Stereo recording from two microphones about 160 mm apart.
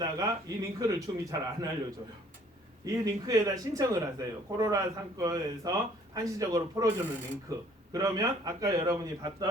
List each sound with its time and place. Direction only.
0.0 s speech: 20° right (ahead or behind)
2.8 s speech: 20° right (ahead or behind)